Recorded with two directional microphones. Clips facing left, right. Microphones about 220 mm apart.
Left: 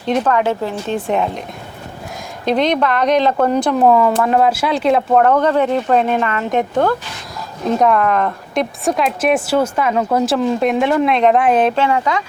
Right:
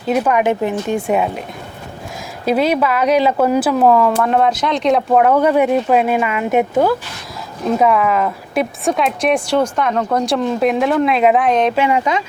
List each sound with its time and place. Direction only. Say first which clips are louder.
0.0 s speech: right 1 dB; 10° right (ahead or behind)
2.4 s a woman's voice: right 1 dB; 5° right (ahead or behind)
11.7 s speech: right 1 dB; 15° right (ahead or behind)